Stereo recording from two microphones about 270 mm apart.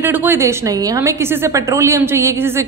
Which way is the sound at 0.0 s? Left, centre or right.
Centre.